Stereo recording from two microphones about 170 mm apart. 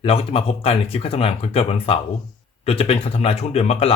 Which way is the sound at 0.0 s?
35° left (ahead or behind).